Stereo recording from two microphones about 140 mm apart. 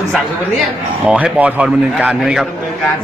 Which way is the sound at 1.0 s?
10° right (ahead or behind).